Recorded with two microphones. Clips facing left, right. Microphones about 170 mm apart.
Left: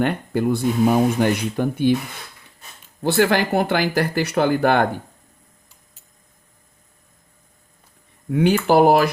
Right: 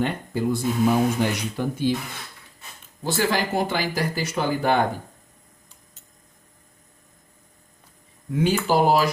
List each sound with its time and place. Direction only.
0.0 s speech: 60° left (ahead or behind)
3.0 s speech: 60° left (ahead or behind)
8.3 s speech: 60° left (ahead or behind)